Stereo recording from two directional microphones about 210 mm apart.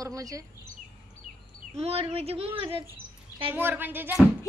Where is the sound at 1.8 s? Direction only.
30° right (ahead or behind).